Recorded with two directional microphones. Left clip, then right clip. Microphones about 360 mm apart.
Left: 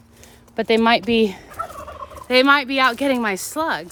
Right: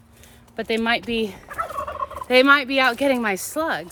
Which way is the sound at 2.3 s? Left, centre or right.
Centre.